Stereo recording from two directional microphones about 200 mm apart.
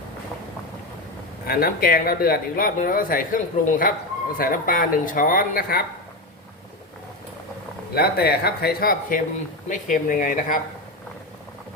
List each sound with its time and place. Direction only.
1.5 s speech: 45° left (ahead or behind)
7.9 s speech: 50° left (ahead or behind)